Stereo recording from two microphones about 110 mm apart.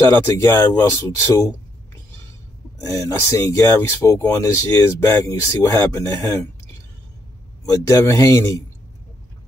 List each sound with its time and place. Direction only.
0.0 s speech: 30° left (ahead or behind)
2.8 s speech: 30° left (ahead or behind)
7.7 s speech: 30° left (ahead or behind)